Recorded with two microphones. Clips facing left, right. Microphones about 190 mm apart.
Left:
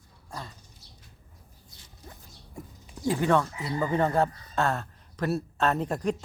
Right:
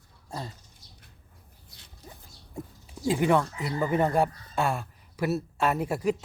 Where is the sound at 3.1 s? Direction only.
15° right (ahead or behind).